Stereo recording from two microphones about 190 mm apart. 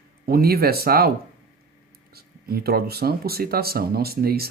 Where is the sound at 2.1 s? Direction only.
55° right (ahead or behind).